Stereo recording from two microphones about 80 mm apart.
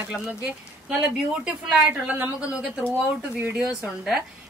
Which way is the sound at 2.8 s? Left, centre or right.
Right.